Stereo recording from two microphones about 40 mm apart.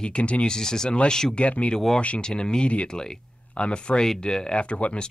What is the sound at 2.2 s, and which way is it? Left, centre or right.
Speech, centre.